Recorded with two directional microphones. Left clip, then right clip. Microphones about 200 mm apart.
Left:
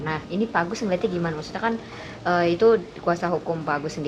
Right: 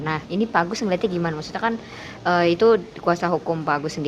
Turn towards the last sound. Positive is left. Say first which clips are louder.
# right 3 dB
turn(degrees=-45)  # may be behind; listen again after turning